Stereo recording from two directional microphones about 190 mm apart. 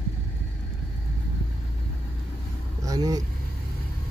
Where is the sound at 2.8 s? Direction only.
20° right (ahead or behind).